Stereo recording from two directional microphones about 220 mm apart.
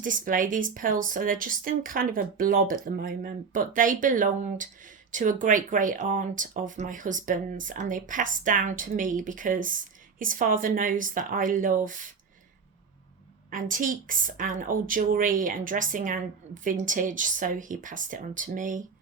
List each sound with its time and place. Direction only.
0.0 s speech: 35° right (ahead or behind)
13.5 s speech: 35° right (ahead or behind)